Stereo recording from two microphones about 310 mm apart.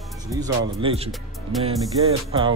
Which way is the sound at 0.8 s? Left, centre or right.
Centre.